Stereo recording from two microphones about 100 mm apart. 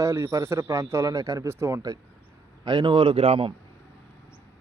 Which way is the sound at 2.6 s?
50° right (ahead or behind).